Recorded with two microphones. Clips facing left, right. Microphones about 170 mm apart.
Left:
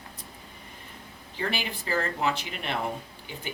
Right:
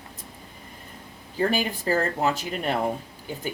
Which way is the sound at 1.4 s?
45° right (ahead or behind).